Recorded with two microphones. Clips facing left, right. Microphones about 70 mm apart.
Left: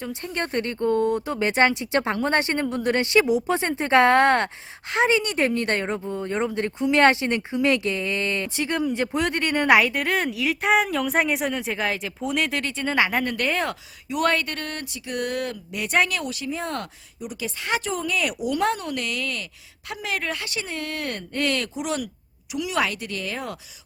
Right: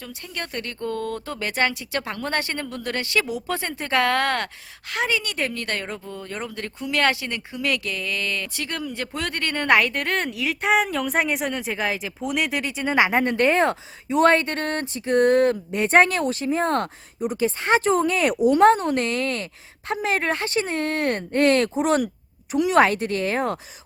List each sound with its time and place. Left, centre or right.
0.0 s speech: left; by 23.6 s right